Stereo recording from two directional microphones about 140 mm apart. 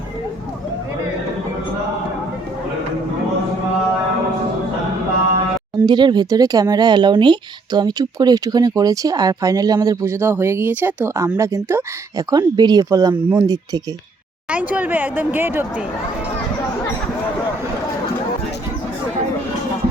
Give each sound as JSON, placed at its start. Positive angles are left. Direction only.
{"t": 5.7, "sound": "speech", "side_deg": -30}
{"t": 14.5, "sound": "speech", "side_deg": -10}